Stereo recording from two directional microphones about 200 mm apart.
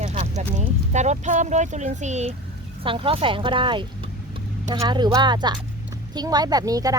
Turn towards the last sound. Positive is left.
turn(degrees=-20)  # may be behind; listen again after turning